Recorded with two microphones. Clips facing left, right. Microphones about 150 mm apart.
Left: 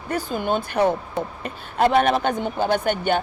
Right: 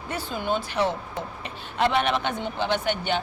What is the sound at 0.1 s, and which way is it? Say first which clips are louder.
Speech: left 4 dB; 45° left (ahead or behind).